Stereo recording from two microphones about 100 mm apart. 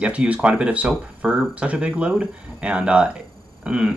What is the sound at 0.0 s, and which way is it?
Speech, 10° right (ahead or behind).